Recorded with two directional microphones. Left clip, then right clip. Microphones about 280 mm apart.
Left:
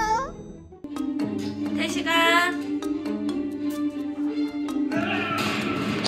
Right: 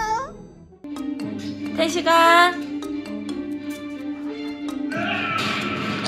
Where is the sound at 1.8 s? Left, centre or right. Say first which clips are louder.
Right 6 dB; centre.